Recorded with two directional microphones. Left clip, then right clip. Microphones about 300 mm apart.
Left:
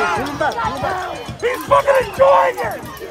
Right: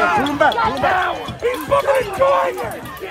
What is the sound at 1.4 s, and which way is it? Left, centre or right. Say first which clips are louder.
Music: left 3 dB; left.